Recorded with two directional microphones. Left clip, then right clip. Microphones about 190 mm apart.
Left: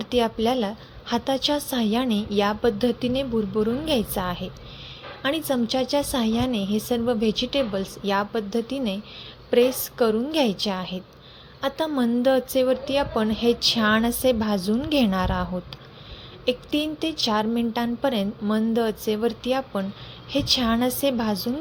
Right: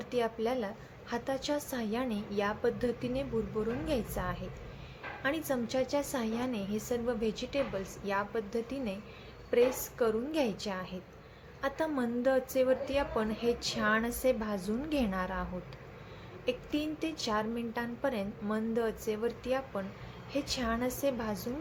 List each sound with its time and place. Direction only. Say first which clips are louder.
0.0 s a woman's voice: left 10 dB; 40° left (ahead or behind)
16.5 s a woman's voice: left 10 dB; 30° left (ahead or behind)